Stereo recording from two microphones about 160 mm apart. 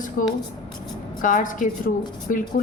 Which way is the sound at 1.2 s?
55° left (ahead or behind).